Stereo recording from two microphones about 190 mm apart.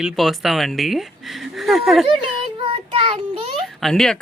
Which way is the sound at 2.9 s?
30° right (ahead or behind).